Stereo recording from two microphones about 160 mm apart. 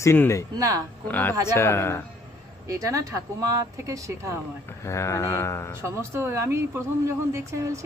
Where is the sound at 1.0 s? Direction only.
10° left (ahead or behind).